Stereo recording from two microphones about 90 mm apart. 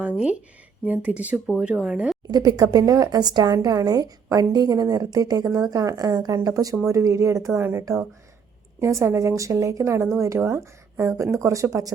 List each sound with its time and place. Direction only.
0.0 s speech: 15° right (ahead or behind)
2.2 s speech: 45° right (ahead or behind)